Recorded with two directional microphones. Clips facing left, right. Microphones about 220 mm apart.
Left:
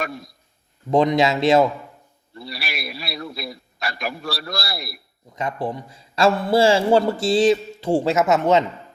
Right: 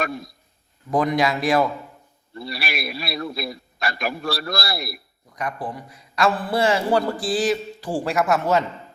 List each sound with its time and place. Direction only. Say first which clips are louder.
0.9 s a man's voice: left 3 dB; 25° left (ahead or behind)
2.4 s a man's voice: right 3 dB; 50° right (ahead or behind)
5.3 s a man's voice: left 3 dB; 25° left (ahead or behind)